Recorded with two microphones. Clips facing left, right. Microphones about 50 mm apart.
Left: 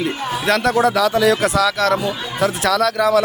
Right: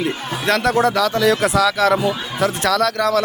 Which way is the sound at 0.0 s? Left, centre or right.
Centre.